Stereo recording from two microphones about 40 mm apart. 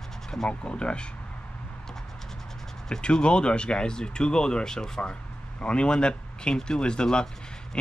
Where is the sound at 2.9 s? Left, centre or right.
Left.